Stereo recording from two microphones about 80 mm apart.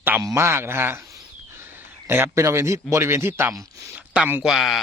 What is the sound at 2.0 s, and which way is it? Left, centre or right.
Speech, right.